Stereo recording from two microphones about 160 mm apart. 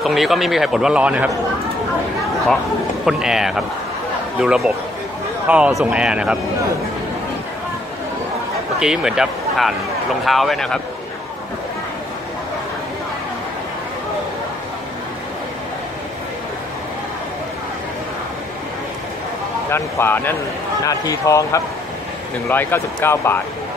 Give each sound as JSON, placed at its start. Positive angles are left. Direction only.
{"t": 0.0, "sound": "a man's voice", "side_deg": 0}
{"t": 3.1, "sound": "a man's voice", "side_deg": -5}
{"t": 8.7, "sound": "a man's voice", "side_deg": -5}
{"t": 19.7, "sound": "speech", "side_deg": 15}